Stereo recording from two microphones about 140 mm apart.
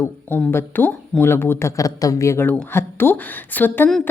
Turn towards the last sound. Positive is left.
turn(degrees=15)  # may be behind; listen again after turning